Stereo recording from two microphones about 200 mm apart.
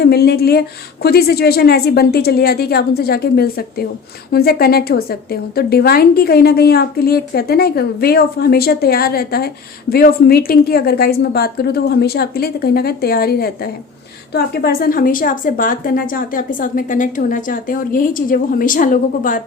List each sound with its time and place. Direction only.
0.0 s a woman's voice: 50° left (ahead or behind)